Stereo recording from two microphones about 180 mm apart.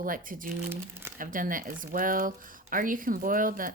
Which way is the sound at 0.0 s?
50° right (ahead or behind).